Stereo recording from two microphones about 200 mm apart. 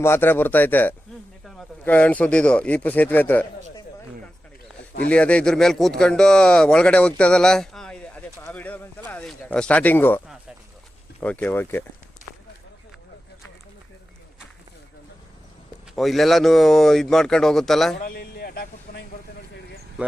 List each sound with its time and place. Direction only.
0.0 s a man's voice: 10° left (ahead or behind)
5.0 s a man's voice: 5° left (ahead or behind)
16.0 s speech: centre (ahead or behind)
18.0 s a sound: 50° left (ahead or behind)
20.0 s speech: 5° right (ahead or behind)